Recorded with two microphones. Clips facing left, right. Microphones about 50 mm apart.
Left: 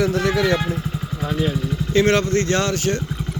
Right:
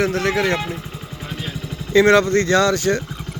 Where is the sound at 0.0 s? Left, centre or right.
Right.